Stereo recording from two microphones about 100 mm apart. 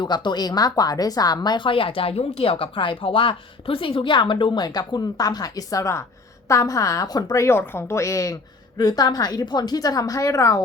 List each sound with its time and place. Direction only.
0.0 s a woman's voice: 50° left (ahead or behind)
7.4 s a woman's voice: 25° left (ahead or behind)